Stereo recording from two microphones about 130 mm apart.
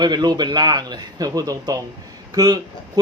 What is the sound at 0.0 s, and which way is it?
A man's voice, 30° right (ahead or behind).